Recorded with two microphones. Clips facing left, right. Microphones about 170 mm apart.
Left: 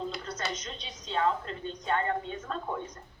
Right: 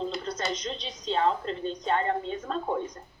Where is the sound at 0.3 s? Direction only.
30° right (ahead or behind).